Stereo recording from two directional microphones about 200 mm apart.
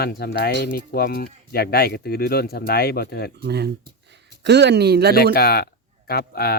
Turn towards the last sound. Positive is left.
turn(degrees=50)  # may be behind; listen again after turning